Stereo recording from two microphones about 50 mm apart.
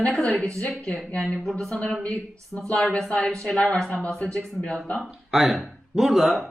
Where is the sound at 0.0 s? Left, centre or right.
Centre.